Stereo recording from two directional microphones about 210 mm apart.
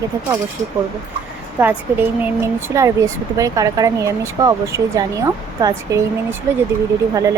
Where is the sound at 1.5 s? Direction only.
10° right (ahead or behind).